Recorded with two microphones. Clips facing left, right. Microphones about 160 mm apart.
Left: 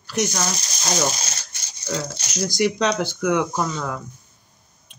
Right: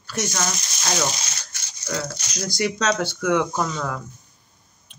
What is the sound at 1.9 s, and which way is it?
Speech, 25° left (ahead or behind).